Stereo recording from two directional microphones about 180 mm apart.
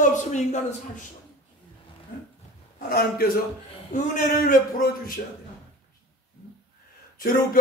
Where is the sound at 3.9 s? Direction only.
45° left (ahead or behind).